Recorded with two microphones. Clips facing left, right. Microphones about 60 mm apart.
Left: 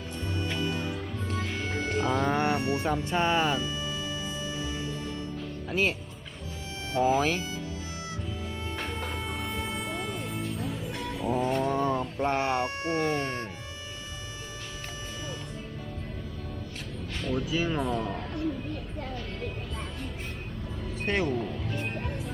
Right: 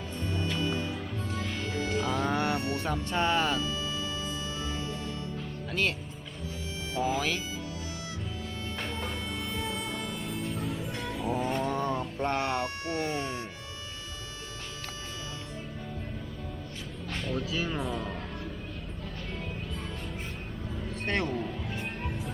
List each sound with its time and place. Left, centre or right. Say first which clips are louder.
0.3 s music: even; left
5.7 s speech: left 3 dB; centre
6.9 s speech: left 5 dB; left
8.9 s music: left 1 dB; centre
12.2 s speech: left 2 dB; centre
13.1 s speech: left 3 dB; left
17.2 s speech: left 3 dB; centre
17.7 s music: left 4 dB; centre
21.0 s speech: left 3 dB; centre
21.8 s music: left 2 dB; centre